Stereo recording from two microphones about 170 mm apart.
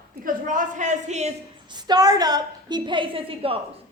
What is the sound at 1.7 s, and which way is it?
A woman's voice, 25° right (ahead or behind).